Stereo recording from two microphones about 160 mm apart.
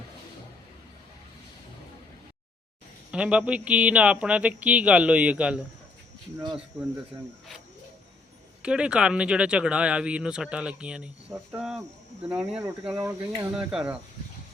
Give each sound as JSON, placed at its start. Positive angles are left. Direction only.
{"t": 3.1, "sound": "speech", "side_deg": -5}
{"t": 8.6, "sound": "speech", "side_deg": -5}
{"t": 13.0, "sound": "speech", "side_deg": -20}
{"t": 13.6, "sound": "speech", "side_deg": -5}